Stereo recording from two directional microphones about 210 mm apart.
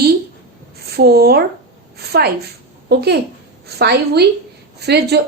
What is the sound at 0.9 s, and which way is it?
Speech, 50° right (ahead or behind).